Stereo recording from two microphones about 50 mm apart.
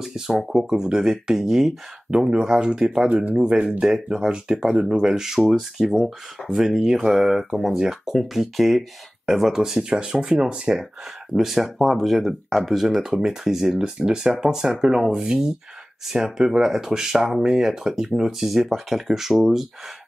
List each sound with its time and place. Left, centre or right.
0.0 s speech: centre; by 3.8 s right
3.8 s speech: centre
5.9 s speech: centre
6.4 s speech: centre
9.6 s speech: centre
11.3 s speech: centre
16.1 s speech: centre
18.4 s speech: centre